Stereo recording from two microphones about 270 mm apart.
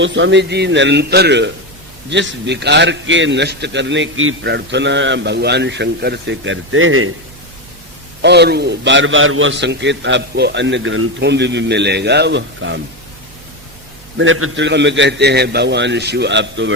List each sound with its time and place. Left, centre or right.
0.0 s a man's voice: right
8.2 s a man's voice: right
14.2 s a man's voice: right